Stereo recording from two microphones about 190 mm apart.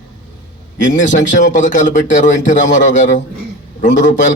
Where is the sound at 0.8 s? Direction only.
40° left (ahead or behind).